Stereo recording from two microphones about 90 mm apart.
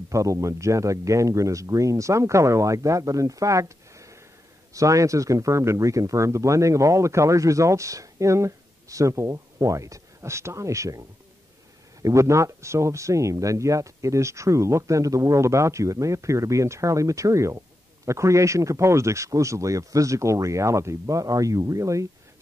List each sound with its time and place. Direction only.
0.1 s speech: 35° right (ahead or behind)